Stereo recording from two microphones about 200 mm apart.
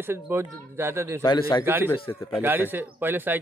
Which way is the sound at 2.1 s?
10° left (ahead or behind).